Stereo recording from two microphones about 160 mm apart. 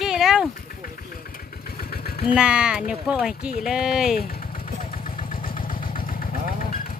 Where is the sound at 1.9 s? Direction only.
70° left (ahead or behind).